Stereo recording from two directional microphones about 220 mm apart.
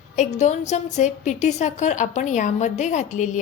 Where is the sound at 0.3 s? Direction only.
30° left (ahead or behind).